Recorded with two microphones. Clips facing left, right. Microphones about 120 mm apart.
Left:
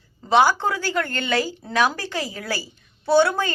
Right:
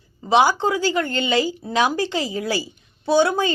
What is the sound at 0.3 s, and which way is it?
A woman's voice, 15° right (ahead or behind).